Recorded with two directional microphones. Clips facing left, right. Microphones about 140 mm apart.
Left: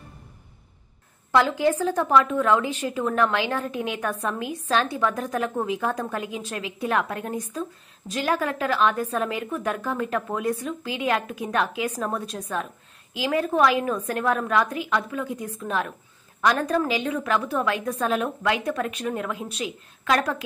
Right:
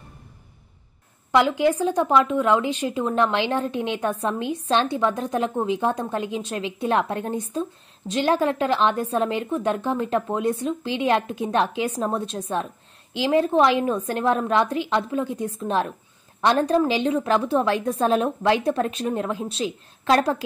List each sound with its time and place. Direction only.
1.3 s a woman's voice: 20° right (ahead or behind)